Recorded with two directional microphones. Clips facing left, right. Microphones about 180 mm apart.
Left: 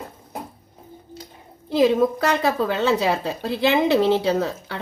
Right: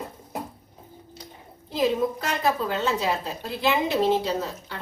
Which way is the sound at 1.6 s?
90° left.